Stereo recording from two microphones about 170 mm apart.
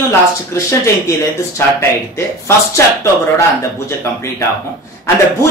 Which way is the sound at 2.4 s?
15° left (ahead or behind).